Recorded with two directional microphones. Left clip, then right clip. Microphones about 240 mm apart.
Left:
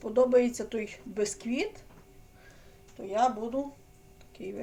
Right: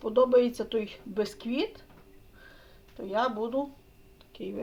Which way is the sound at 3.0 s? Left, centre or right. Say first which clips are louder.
Left 1 dB; right.